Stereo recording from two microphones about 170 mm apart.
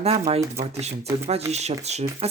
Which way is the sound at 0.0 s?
35° right (ahead or behind).